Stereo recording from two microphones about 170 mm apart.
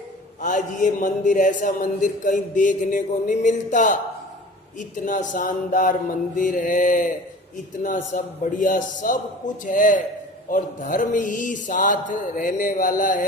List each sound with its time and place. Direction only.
0.4 s a man's voice: 50° left (ahead or behind)